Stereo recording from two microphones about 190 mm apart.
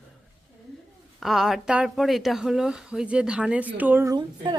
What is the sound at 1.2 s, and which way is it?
Speech, centre (ahead or behind).